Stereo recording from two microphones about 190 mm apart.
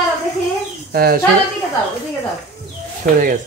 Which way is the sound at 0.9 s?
50° right (ahead or behind).